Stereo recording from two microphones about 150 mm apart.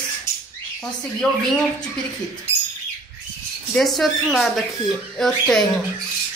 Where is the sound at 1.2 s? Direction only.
10° left (ahead or behind).